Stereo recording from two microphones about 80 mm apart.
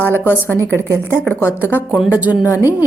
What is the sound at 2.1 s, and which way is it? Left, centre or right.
Speech, centre.